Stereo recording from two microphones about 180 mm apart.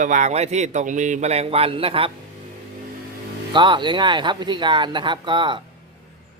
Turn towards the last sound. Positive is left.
turn(degrees=-25)  # may be behind; listen again after turning